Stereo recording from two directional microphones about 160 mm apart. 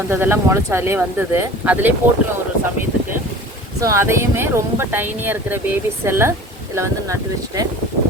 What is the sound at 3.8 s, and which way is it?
Speech, 20° right (ahead or behind).